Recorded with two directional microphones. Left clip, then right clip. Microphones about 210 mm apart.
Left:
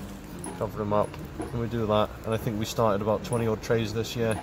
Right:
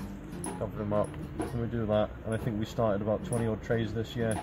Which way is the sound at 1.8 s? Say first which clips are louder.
Left 4 dB; 30° left (ahead or behind).